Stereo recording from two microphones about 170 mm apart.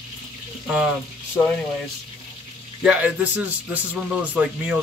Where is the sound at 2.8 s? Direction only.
5° right (ahead or behind).